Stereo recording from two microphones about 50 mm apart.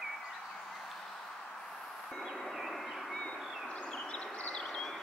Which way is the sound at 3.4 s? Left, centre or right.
Centre.